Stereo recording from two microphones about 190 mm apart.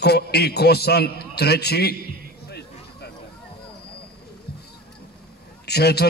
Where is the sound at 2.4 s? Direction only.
60° left (ahead or behind).